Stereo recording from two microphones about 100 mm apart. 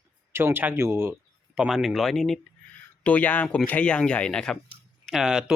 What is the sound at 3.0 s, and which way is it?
Speech, 15° left (ahead or behind).